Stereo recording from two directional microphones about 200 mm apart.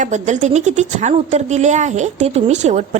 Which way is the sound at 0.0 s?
35° right (ahead or behind).